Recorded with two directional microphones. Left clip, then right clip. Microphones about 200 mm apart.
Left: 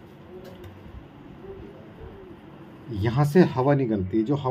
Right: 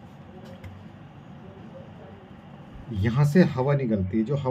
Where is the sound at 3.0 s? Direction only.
25° left (ahead or behind).